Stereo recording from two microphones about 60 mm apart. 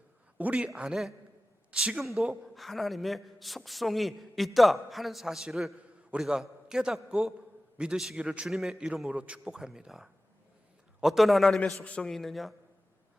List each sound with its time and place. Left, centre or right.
0.3 s a man's voice: right
0.8 s a man's voice: centre
8.4 s a man's voice: centre
9.0 s a man's voice: centre
11.6 s a man's voice: centre
12.0 s a man's voice: centre